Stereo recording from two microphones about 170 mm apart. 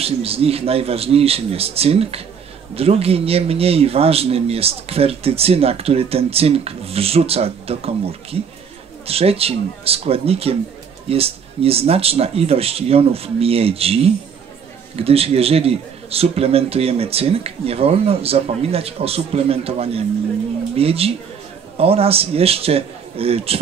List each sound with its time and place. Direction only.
0.0 s a man's voice: 35° right (ahead or behind)